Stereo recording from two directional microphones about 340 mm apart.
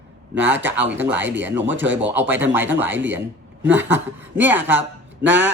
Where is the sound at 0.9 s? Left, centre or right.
Centre.